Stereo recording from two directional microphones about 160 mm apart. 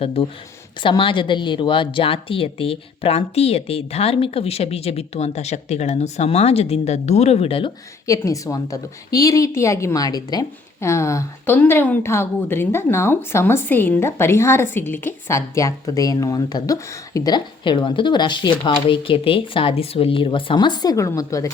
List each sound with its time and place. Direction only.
0.0 s a woman's voice: 35° left (ahead or behind)
8.0 s a woman's voice: 20° left (ahead or behind)